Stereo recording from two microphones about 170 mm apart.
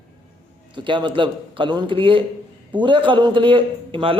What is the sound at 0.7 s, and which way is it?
A woman's voice, 30° right (ahead or behind).